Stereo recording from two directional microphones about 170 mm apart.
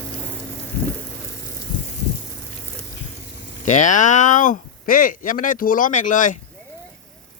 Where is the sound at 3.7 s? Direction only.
45° left (ahead or behind).